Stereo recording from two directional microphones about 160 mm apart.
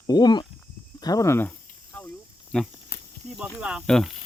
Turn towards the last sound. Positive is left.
turn(degrees=0)  # may be behind; listen again after turning